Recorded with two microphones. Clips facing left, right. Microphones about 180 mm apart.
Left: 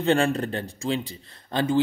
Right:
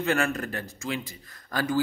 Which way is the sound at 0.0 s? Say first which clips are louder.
Left 5 dB; 30° left (ahead or behind).